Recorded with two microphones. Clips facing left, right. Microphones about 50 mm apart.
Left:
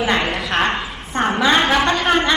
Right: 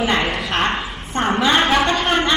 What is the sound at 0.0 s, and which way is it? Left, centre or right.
A woman's voice, centre.